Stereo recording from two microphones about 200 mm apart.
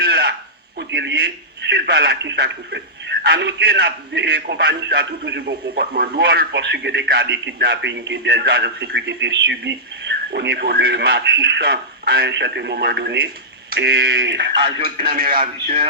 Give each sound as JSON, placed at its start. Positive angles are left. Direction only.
{"t": 0.0, "sound": "a sound", "side_deg": -55}
{"t": 0.8, "sound": "a man's voice", "side_deg": -60}
{"t": 14.8, "sound": "speech", "side_deg": -50}